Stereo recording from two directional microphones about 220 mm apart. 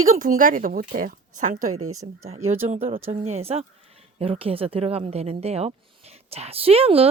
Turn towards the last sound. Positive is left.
turn(degrees=-25)  # may be behind; listen again after turning